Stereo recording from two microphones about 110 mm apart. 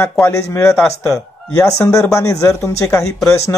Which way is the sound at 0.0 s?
15° left (ahead or behind).